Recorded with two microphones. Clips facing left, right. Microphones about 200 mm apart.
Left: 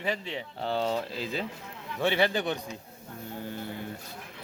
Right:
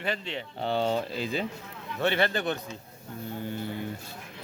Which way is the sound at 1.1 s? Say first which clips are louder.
Right 2 dB; centre (ahead or behind).